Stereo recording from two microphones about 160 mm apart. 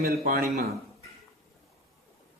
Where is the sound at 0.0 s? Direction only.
70° right (ahead or behind).